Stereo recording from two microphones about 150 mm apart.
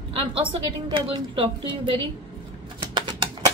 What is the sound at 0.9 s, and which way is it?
A woman's voice, 35° right (ahead or behind).